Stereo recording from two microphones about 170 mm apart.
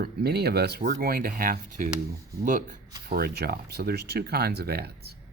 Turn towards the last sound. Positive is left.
turn(degrees=-70)  # may be behind; listen again after turning